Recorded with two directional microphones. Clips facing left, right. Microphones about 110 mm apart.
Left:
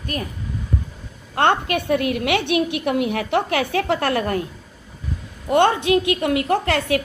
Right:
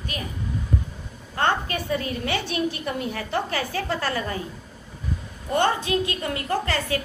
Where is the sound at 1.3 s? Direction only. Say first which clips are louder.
Left 5 dB; 65° left (ahead or behind).